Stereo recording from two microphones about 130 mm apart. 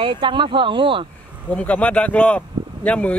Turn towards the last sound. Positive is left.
turn(degrees=10)  # may be behind; listen again after turning